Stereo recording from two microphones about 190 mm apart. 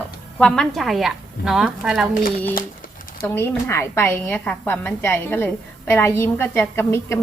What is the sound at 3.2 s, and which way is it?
A woman's voice, 10° left (ahead or behind).